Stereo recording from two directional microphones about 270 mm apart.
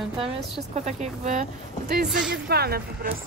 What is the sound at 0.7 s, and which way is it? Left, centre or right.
Speech, right.